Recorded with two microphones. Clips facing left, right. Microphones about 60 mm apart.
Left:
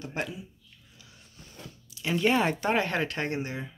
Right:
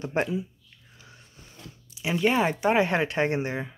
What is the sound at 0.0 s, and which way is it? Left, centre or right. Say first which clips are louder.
Speech: right 7 dB; right.